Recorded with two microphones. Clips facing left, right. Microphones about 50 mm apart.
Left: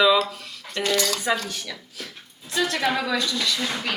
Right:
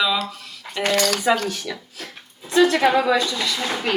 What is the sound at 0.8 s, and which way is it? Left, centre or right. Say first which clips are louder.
Speech: right 4 dB; right.